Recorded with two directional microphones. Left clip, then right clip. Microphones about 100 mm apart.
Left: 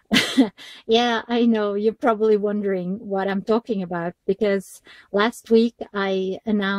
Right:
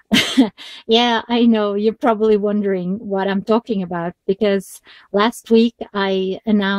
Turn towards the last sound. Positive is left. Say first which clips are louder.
# right 4 dB
turn(degrees=20)  # may be behind; listen again after turning